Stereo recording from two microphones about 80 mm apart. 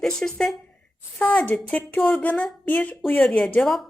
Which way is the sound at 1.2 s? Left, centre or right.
Centre.